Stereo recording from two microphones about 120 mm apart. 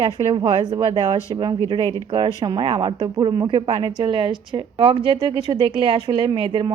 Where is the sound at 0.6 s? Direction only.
35° right (ahead or behind).